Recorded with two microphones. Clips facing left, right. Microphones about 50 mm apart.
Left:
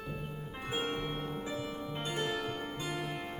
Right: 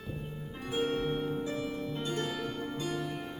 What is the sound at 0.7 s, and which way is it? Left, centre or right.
Music, left.